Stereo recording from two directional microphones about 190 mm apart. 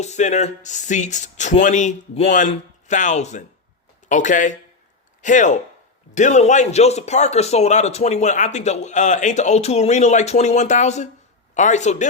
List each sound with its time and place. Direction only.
0.0 s speech: 40° left (ahead or behind)